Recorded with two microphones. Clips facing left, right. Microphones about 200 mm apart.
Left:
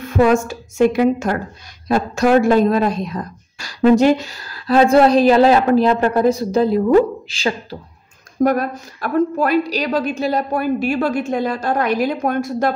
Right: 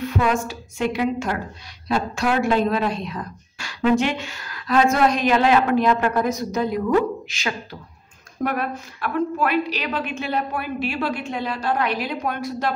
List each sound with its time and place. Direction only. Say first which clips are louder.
0.0 s a woman's voice: left 7 dB; 45° left (ahead or behind)